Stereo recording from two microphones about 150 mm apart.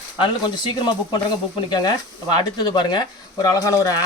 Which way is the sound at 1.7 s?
30° left (ahead or behind).